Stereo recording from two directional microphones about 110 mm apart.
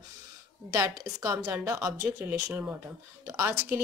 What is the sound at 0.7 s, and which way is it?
A woman's voice, 30° right (ahead or behind).